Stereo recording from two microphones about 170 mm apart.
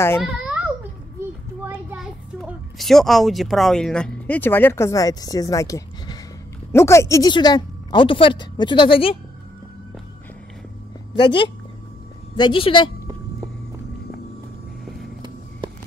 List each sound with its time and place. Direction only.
0.2 s a sound: 5° right (ahead or behind)
1.6 s a child's voice: 10° right (ahead or behind); by 9.1 s 30° left (ahead or behind)
11.1 s speech: 30° left (ahead or behind)